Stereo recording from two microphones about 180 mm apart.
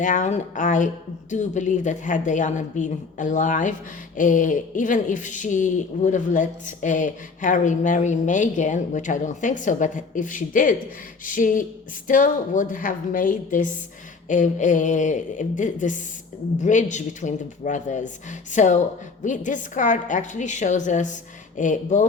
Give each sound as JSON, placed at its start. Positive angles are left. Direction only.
{"t": 0.0, "sound": "a woman's voice", "side_deg": 45}